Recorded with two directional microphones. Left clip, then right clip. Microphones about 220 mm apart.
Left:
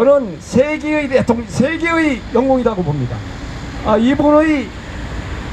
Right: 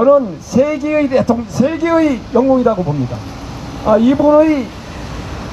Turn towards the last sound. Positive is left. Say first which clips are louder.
# right 2 dB
turn(degrees=40)  # may be behind; listen again after turning